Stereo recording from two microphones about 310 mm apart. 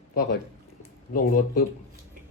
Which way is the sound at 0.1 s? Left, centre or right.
Left.